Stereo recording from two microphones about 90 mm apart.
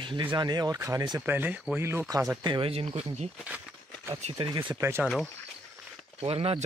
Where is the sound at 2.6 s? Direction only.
90° right.